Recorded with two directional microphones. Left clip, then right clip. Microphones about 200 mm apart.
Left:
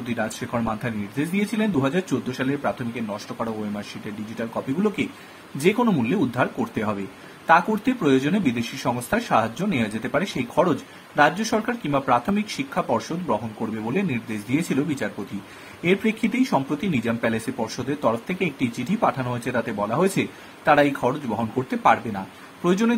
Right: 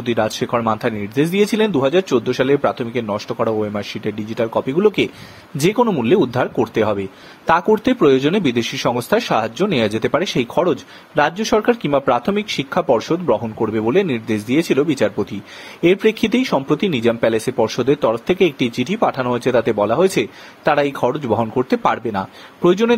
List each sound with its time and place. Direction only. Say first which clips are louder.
0.1 s speech: right 9 dB; 40° right (ahead or behind)